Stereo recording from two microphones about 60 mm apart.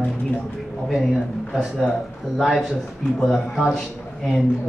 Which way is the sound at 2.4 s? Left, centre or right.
Centre.